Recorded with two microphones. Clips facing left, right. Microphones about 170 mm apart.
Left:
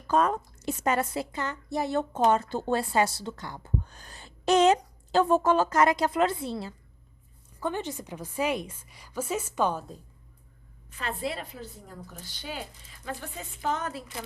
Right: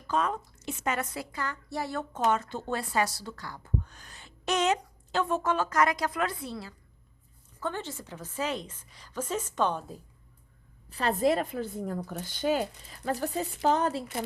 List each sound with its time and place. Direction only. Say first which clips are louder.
0.1 s a woman's voice: left 5 dB; 45° left (ahead or behind); by 6.7 s 25° left (ahead or behind)
7.6 s a woman's voice: left 3 dB; 15° left (ahead or behind)
10.8 s a woman's voice: right 8 dB; 35° right (ahead or behind)